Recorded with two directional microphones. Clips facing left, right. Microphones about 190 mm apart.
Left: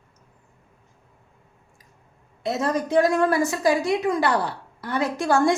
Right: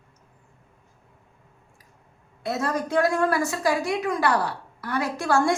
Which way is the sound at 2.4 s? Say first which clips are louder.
Left 2 dB; 20° left (ahead or behind).